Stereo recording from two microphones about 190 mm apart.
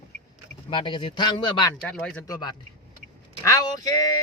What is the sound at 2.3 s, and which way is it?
A man's voice, 20° left (ahead or behind).